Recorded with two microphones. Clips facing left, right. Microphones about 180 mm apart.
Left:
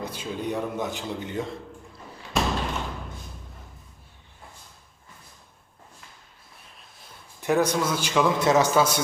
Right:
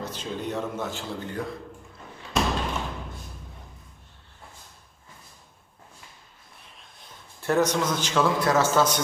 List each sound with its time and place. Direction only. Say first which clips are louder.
0.0 s a man's voice: left 1 dB; 10° left (ahead or behind)
2.3 s slam: even; centre (ahead or behind)
7.4 s a man's voice: even; 10° left (ahead or behind)